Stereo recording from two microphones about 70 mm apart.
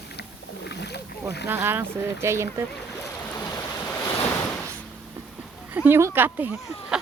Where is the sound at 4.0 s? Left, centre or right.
Left.